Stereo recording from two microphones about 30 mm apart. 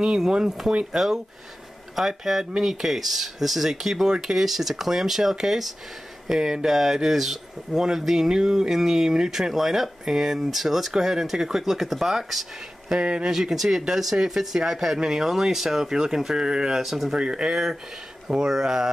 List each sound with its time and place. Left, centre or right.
0.2 s speech: right
9.4 s speech: centre
13.0 s speech: right
13.3 s speech: centre
16.7 s speech: centre
17.2 s speech: right
17.5 s speech: centre